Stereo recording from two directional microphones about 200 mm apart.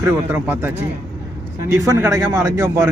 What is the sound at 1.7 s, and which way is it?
Speech, 15° right (ahead or behind).